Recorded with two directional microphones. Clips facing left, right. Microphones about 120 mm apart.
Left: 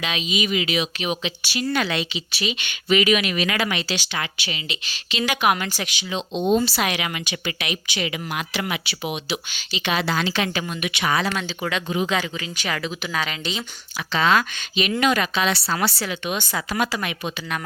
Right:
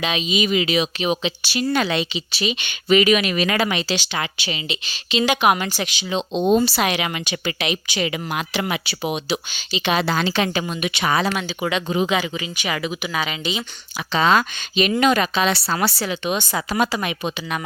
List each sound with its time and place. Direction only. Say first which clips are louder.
0.0 s speech: right 4 dB; 25° right (ahead or behind)
2.9 s speech: right 3 dB; 40° right (ahead or behind)
11.3 s speech: right 3 dB; 15° right (ahead or behind)
14.1 s speech: right 2 dB; 25° right (ahead or behind)